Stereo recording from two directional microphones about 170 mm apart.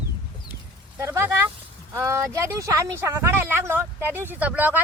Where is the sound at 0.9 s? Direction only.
15° right (ahead or behind).